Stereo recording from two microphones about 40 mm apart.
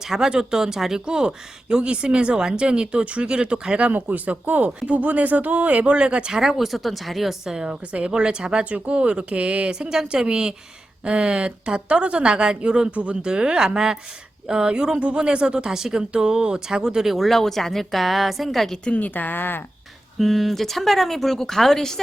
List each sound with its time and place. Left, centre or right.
0.0 s speech: centre; by 4.4 s right
4.4 s speech: right
6.2 s speech: centre
7.4 s speech: centre
17.2 s speech: centre
18.9 s speech: left
20.1 s speech: centre